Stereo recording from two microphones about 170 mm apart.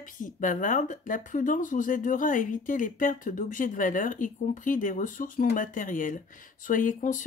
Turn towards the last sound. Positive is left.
turn(degrees=50)  # may be behind; listen again after turning